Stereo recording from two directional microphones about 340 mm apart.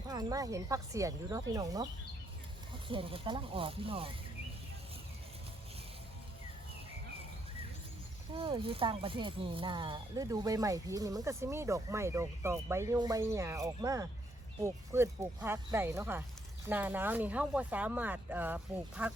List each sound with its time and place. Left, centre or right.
0.1 s speech: centre
2.9 s speech: centre
8.3 s speech: centre